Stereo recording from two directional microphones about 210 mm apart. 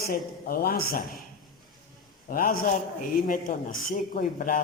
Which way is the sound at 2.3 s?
45° left (ahead or behind).